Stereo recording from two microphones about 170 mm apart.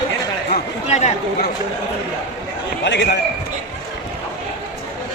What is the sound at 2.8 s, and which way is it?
Speech, 80° left.